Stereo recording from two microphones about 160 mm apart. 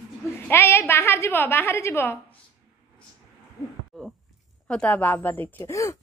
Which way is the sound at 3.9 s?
5° left (ahead or behind).